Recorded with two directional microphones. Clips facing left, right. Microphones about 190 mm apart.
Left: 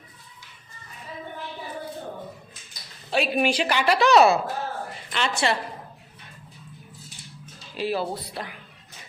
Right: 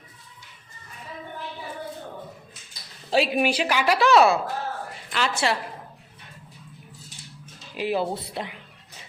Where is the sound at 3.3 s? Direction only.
5° right (ahead or behind).